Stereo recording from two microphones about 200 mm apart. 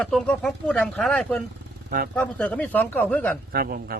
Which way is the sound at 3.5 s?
45° right (ahead or behind).